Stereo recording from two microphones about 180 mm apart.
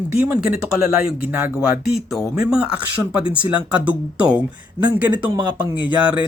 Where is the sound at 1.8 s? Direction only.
Centre (ahead or behind).